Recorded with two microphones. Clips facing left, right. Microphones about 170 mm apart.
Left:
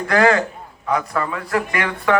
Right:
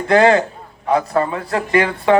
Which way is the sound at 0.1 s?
25° right (ahead or behind).